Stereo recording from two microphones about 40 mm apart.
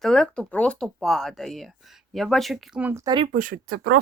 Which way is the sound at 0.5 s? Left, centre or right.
Left.